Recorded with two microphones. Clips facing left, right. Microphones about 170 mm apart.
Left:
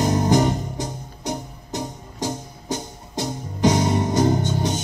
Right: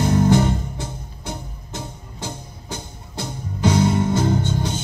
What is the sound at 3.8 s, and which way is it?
Music, 40° left (ahead or behind).